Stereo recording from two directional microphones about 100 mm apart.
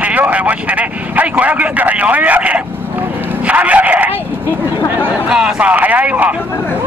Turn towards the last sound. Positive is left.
turn(degrees=-15)  # may be behind; listen again after turning